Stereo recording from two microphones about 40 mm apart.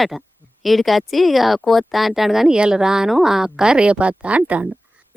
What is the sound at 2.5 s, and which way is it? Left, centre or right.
Speech, centre.